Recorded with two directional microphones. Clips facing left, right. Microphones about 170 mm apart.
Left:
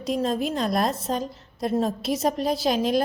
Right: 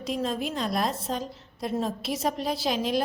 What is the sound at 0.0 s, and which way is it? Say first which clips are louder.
A woman's voice: left 4 dB; 40° left (ahead or behind).